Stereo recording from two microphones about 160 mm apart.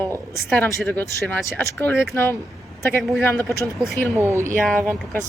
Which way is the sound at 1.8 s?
15° left (ahead or behind).